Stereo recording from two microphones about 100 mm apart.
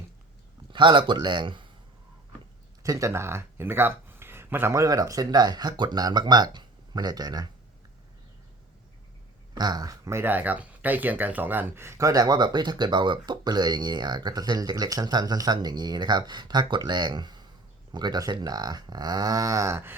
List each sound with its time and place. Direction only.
0.7 s speech: 50° right (ahead or behind)
2.8 s speech: 35° right (ahead or behind)
9.6 s speech: 45° right (ahead or behind); by 20.0 s 25° right (ahead or behind)